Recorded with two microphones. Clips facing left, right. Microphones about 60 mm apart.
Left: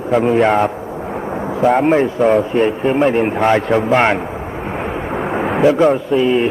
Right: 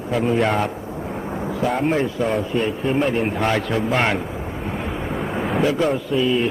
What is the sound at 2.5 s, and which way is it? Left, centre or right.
A man's voice, left.